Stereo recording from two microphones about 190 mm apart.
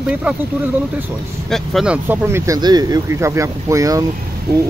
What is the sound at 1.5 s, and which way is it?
Speech, centre (ahead or behind).